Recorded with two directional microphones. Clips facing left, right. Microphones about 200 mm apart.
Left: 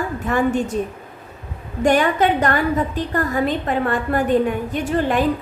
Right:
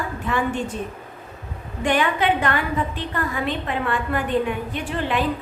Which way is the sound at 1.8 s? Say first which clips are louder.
Left 4 dB; 45° left (ahead or behind).